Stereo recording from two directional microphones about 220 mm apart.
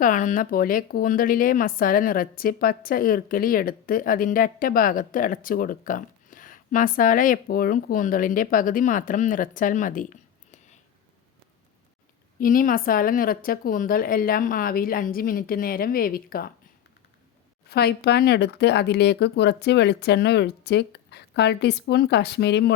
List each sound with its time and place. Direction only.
0.0 s a woman's voice: 35° left (ahead or behind)
12.4 s a woman's voice: 40° left (ahead or behind)
17.7 s speech: 45° left (ahead or behind)